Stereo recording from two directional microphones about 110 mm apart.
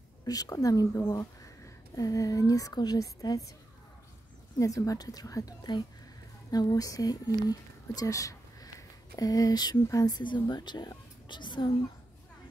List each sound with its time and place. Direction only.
0.2 s a woman's voice: 35° left (ahead or behind)
4.6 s a woman's voice: 30° left (ahead or behind)